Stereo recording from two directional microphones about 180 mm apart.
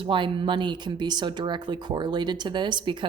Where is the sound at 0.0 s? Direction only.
25° right (ahead or behind).